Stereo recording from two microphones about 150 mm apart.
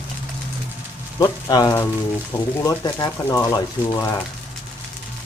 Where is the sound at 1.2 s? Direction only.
25° left (ahead or behind).